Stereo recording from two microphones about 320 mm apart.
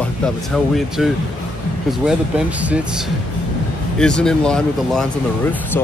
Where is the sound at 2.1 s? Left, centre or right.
Centre.